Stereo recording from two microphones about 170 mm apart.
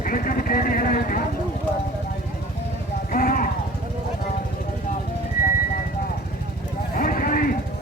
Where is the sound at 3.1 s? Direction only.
55° left (ahead or behind).